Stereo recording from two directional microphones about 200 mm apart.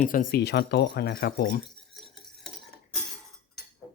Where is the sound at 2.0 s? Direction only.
Centre (ahead or behind).